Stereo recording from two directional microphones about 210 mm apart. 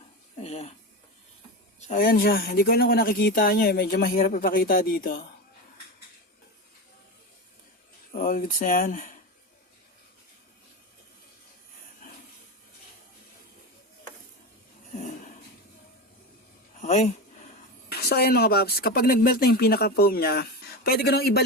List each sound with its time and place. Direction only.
0.4 s a sound: 30° left (ahead or behind)
1.9 s speech: 45° left (ahead or behind)
8.1 s speech: 40° left (ahead or behind)
16.8 s speech: 35° left (ahead or behind)
17.9 s speech: 50° left (ahead or behind)